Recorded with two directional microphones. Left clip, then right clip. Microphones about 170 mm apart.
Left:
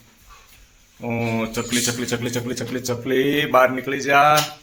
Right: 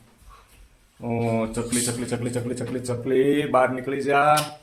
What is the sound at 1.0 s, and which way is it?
A man's voice, 15° left (ahead or behind).